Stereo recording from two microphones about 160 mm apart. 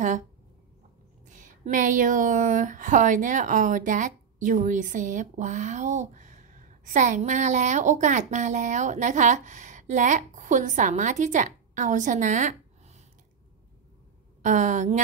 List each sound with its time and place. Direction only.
1.2 s speech: 50° right (ahead or behind)
14.4 s speech: 50° right (ahead or behind)